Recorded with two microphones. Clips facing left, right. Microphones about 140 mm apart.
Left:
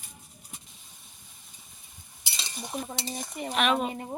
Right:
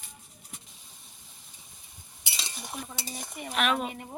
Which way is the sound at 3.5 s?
Centre (ahead or behind).